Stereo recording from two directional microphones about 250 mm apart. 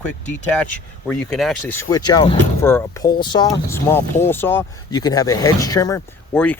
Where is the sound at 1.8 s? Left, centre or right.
Centre.